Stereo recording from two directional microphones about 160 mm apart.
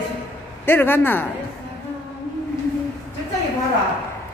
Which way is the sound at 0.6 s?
15° left (ahead or behind).